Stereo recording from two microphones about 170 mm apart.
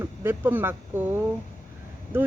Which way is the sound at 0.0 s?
15° right (ahead or behind).